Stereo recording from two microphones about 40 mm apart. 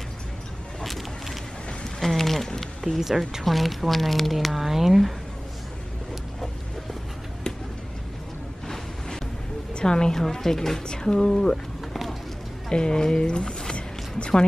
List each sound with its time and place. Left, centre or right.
0.8 s vehicle: centre
2.0 s speech: centre
3.0 s speech: centre
9.8 s speech: centre
11.9 s a sound: centre
12.6 s speech: centre